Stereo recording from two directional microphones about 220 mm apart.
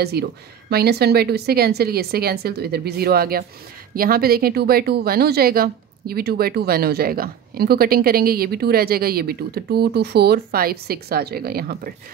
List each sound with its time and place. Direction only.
0.0 s speech: 45° right (ahead or behind)